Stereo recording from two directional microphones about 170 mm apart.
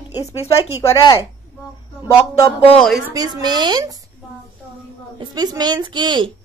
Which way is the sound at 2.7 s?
5° left (ahead or behind).